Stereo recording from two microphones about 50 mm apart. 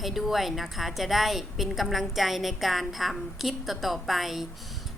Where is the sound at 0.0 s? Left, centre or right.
Centre.